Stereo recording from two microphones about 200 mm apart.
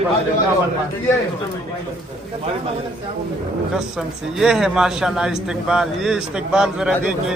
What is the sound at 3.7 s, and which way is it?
A man's voice, centre (ahead or behind).